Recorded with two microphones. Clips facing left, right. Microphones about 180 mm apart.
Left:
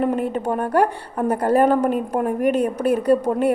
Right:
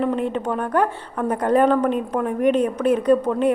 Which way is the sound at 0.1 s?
5° left (ahead or behind).